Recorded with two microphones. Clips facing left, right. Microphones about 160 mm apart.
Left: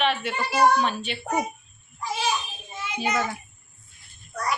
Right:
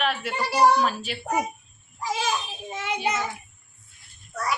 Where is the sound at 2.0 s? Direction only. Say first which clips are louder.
Even; 40° right (ahead or behind).